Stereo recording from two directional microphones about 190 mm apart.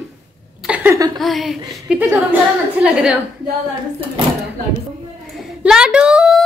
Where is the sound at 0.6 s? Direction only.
10° right (ahead or behind).